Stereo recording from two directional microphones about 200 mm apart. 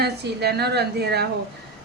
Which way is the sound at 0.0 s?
55° right (ahead or behind).